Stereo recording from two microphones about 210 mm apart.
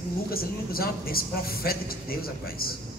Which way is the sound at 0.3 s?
45° left (ahead or behind).